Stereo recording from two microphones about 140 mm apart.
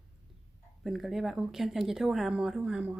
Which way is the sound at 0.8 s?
Centre (ahead or behind).